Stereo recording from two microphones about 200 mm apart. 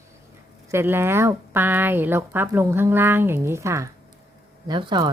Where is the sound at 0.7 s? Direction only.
10° right (ahead or behind).